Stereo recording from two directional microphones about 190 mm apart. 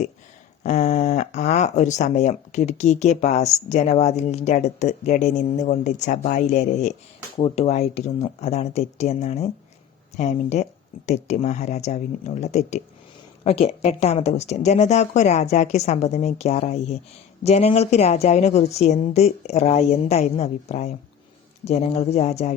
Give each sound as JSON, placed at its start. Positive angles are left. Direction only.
{"t": 0.6, "sound": "speech", "side_deg": 40}